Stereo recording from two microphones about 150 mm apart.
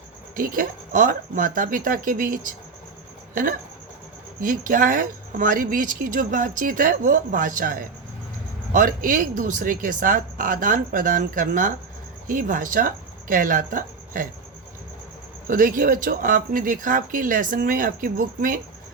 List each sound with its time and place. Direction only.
0.3 s speech: 65° right (ahead or behind)
4.4 s speech: 65° right (ahead or behind)
15.4 s speech: 65° right (ahead or behind)